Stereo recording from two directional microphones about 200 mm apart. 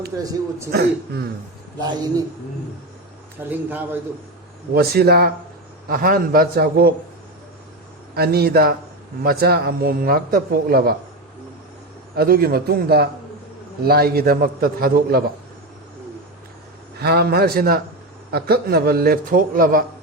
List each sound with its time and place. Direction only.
0.2 s a man's voice: 15° right (ahead or behind)
0.7 s speech: 55° right (ahead or behind)
3.5 s a man's voice: 10° right (ahead or behind)
4.7 s speech: 50° right (ahead or behind)
8.1 s speech: 50° right (ahead or behind)
12.1 s speech: 50° right (ahead or behind)
17.0 s speech: 55° right (ahead or behind)